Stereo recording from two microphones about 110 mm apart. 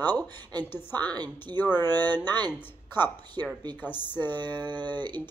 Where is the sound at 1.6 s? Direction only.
20° left (ahead or behind).